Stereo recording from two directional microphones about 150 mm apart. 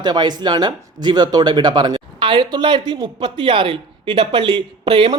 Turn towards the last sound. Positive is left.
turn(degrees=-35)  # may be behind; listen again after turning